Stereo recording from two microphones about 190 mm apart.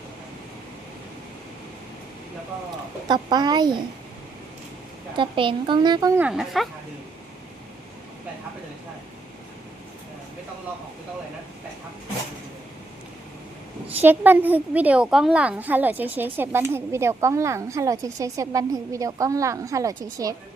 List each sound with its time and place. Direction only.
3.1 s speech: 20° right (ahead or behind)
5.1 s speech: 25° right (ahead or behind); by 6.7 s centre (ahead or behind)
13.8 s a woman's voice: 10° right (ahead or behind)